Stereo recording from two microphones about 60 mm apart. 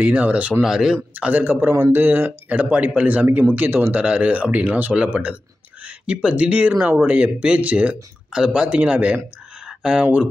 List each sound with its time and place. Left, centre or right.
0.0 s speech: right
0.6 s speech: centre
1.1 s speech: right
1.7 s speech: right
4.0 s speech: right
9.7 s a sound: centre